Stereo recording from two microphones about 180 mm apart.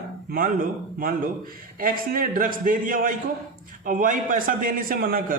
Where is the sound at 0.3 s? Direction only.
50° right (ahead or behind).